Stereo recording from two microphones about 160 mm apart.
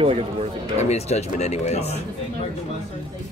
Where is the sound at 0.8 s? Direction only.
45° left (ahead or behind).